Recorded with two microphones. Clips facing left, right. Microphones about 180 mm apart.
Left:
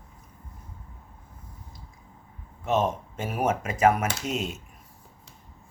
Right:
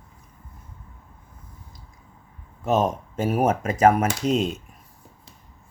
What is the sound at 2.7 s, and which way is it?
Speech, 40° right (ahead or behind).